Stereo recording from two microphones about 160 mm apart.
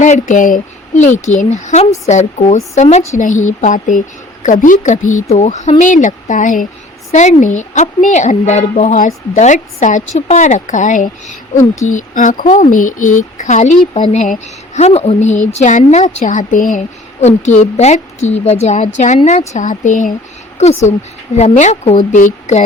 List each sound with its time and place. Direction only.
0.0 s speech: 50° left (ahead or behind)
20.6 s speech: 45° left (ahead or behind)